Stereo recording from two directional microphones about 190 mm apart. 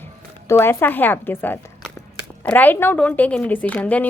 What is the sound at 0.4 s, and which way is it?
Speech, 15° left (ahead or behind).